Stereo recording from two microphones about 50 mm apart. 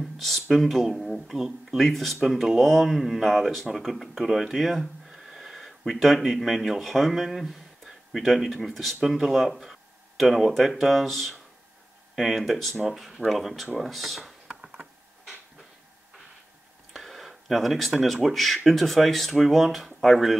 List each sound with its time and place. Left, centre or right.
0.0 s speech: centre
14.5 s computer keyboard: centre
16.9 s a sound: centre
18.0 s speech: centre